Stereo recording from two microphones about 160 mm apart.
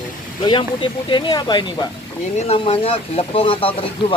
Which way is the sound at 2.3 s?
40° left (ahead or behind).